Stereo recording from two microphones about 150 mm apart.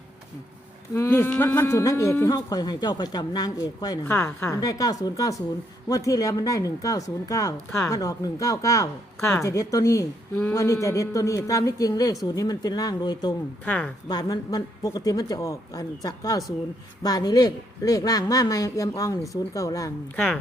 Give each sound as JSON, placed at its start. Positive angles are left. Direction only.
{"t": 0.9, "sound": "speech", "side_deg": 15}
{"t": 13.7, "sound": "a woman's voice", "side_deg": 10}
{"t": 14.1, "sound": "speech", "side_deg": 25}